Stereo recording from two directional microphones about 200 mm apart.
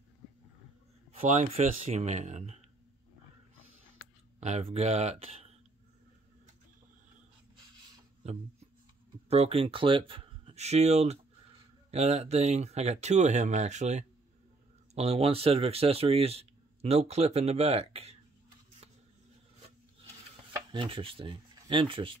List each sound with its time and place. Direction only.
1.3 s speech: 35° right (ahead or behind)
3.5 s a sound: 90° right
4.4 s speech: 30° right (ahead or behind)
8.2 s speech: 30° right (ahead or behind)
20.7 s speech: 25° right (ahead or behind)